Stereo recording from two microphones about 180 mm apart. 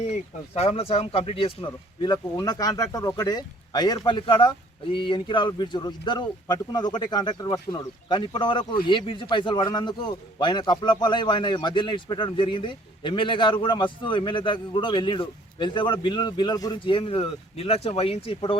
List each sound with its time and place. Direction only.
0.0 s speech: 35° left (ahead or behind)